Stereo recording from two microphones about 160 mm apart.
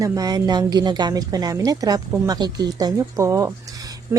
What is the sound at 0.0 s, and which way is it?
Speech, 20° right (ahead or behind).